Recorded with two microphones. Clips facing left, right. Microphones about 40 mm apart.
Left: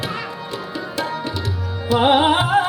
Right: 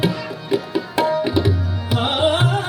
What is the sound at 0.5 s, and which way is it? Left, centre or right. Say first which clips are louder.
Tabla: right 8 dB; right.